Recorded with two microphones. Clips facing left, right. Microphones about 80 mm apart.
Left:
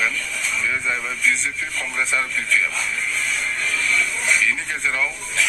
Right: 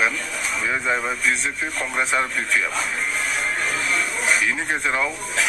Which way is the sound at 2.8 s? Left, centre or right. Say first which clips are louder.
Right 1 dB; right.